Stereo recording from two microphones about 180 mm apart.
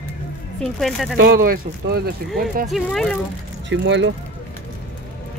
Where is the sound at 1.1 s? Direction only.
55° right (ahead or behind).